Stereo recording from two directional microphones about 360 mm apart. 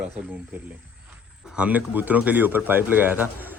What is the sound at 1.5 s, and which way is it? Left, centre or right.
Speech, centre.